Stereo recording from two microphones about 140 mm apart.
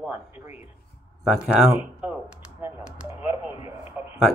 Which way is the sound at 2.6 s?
15° right (ahead or behind).